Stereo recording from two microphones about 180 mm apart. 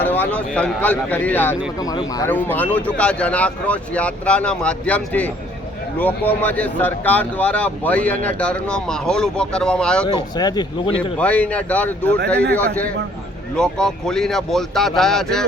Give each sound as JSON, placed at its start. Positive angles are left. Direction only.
{"t": 0.0, "sound": "speech", "side_deg": 10}
{"t": 1.8, "sound": "speech", "side_deg": 20}
{"t": 2.3, "sound": "speech", "side_deg": 10}
{"t": 10.1, "sound": "speech", "side_deg": 25}
{"t": 11.2, "sound": "speech", "side_deg": 5}